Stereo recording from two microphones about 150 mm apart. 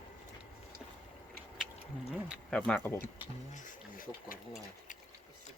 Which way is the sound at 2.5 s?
10° left (ahead or behind).